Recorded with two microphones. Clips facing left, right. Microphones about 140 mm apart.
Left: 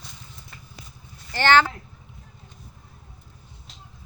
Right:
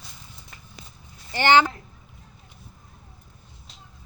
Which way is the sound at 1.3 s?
15° right (ahead or behind).